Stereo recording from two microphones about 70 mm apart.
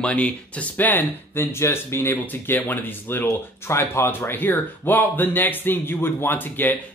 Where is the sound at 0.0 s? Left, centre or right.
Centre.